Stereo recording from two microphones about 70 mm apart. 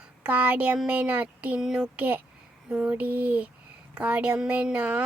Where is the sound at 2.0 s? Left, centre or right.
Right.